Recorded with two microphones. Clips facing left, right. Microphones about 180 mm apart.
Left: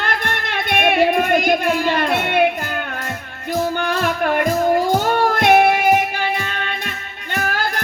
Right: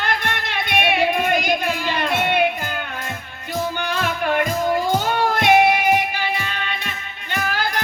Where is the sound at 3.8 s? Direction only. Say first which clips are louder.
Left 3 dB; 50° left (ahead or behind).